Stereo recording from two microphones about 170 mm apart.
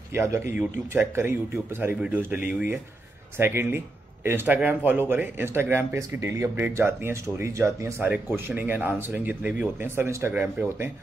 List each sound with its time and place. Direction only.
0.1 s a man's voice: 15° right (ahead or behind)